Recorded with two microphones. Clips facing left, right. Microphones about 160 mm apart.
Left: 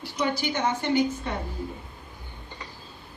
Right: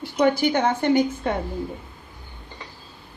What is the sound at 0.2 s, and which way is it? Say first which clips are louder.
A woman's voice: right 7 dB; 55° right (ahead or behind).